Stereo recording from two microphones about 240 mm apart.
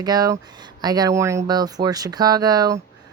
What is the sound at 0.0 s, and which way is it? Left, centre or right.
Speech, centre.